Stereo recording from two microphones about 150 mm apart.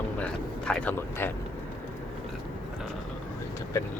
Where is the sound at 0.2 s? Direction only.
10° left (ahead or behind).